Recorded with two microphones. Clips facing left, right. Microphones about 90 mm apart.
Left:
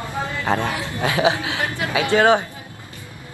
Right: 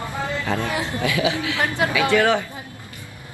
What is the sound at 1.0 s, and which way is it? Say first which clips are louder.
A man's voice: left 4 dB; 25° left (ahead or behind).